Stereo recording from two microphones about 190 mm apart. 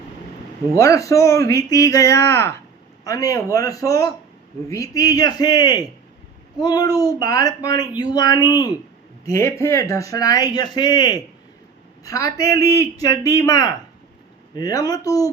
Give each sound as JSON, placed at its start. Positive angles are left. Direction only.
{"t": 0.8, "sound": "speech", "side_deg": 15}